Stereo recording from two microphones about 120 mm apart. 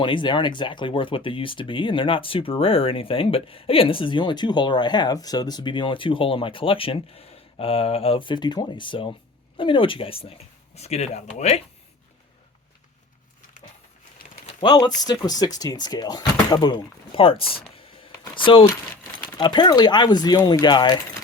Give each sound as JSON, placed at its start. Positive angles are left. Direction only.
{"t": 0.0, "sound": "speech", "side_deg": 45}
{"t": 14.6, "sound": "speech", "side_deg": 35}
{"t": 17.2, "sound": "a sound", "side_deg": 50}
{"t": 19.4, "sound": "speech", "side_deg": 40}